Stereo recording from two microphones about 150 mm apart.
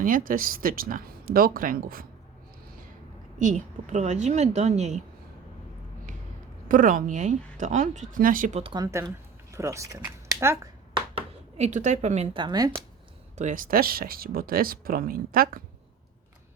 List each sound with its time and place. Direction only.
0.0 s speech: 65° right (ahead or behind)
3.3 s a woman's voice: 60° right (ahead or behind)
6.7 s speech: 65° right (ahead or behind)
8.7 s speech: 20° right (ahead or behind)
9.5 s a sound: 20° right (ahead or behind)
11.1 s speech: 45° right (ahead or behind)
12.4 s speech: 25° right (ahead or behind)
13.3 s speech: 55° right (ahead or behind); by 15.6 s 75° right (ahead or behind)